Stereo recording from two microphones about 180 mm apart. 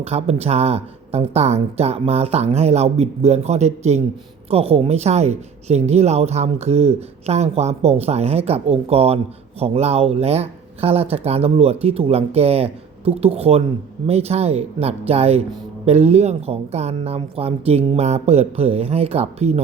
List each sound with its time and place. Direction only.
0.0 s a woman's voice: 35° right (ahead or behind)